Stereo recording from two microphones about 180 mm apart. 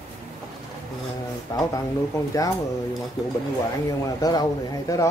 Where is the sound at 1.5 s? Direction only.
20° left (ahead or behind).